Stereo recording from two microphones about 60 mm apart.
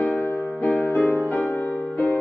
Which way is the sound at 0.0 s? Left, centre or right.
Left.